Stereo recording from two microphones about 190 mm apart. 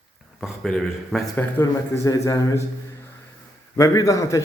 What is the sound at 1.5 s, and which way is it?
A man's voice, 15° left (ahead or behind).